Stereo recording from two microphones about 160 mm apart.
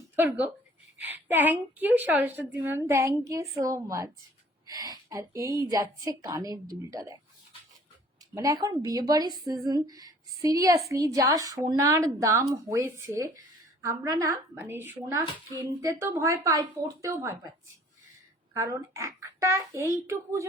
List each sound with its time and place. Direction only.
0.2 s a woman's voice: 10° right (ahead or behind)
8.4 s a woman's voice: 20° right (ahead or behind)
18.5 s a woman's voice: 20° right (ahead or behind)